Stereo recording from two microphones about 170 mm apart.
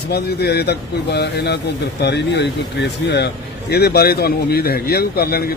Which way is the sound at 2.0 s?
90° left.